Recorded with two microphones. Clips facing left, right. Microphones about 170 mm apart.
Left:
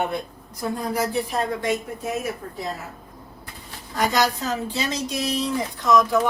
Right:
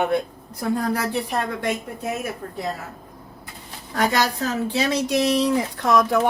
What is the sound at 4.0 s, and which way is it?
Speech, 65° right (ahead or behind).